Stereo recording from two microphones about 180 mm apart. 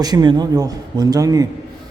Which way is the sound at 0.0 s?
20° right (ahead or behind).